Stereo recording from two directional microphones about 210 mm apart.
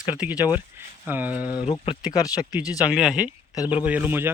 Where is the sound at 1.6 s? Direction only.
25° left (ahead or behind).